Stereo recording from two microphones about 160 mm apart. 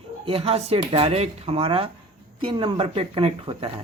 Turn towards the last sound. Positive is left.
turn(degrees=-35)  # may be behind; listen again after turning